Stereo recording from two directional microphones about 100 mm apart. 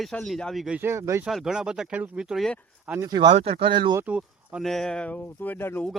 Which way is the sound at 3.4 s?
70° right (ahead or behind).